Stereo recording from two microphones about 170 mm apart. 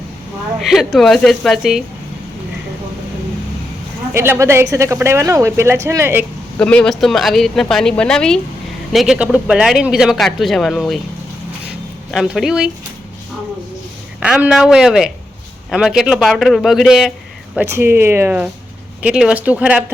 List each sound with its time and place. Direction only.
0.6 s speech: centre (ahead or behind)
4.1 s a woman's voice: 15° right (ahead or behind)
6.6 s speech: 5° left (ahead or behind)
12.1 s speech: centre (ahead or behind)
14.2 s a woman's voice: 5° right (ahead or behind)